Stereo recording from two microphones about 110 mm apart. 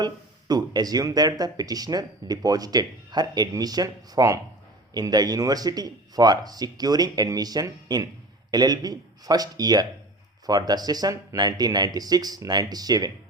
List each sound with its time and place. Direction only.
0.0 s speech: 40° right (ahead or behind)